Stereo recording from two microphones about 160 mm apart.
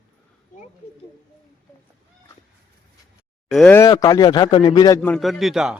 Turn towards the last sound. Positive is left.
turn(degrees=0)  # may be behind; listen again after turning